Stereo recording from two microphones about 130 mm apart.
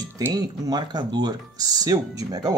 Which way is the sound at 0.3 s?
30° right (ahead or behind).